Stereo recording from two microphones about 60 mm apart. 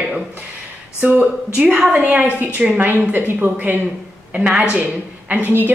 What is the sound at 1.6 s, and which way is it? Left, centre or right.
A woman's voice, right.